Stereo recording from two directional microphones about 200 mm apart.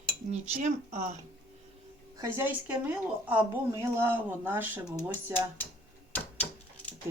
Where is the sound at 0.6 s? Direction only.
35° right (ahead or behind).